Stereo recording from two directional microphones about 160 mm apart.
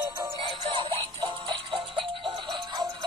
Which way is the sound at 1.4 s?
30° right (ahead or behind).